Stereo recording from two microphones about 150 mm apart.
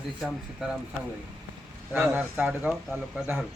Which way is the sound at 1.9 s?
10° right (ahead or behind).